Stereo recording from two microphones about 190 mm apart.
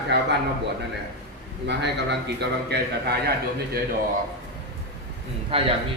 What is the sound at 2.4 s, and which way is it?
Speech, 60° right (ahead or behind).